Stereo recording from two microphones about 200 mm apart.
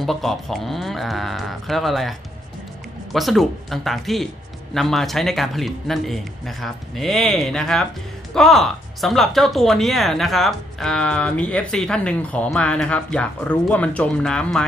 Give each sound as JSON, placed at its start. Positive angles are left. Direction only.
{"t": 0.0, "sound": "speech", "side_deg": 0}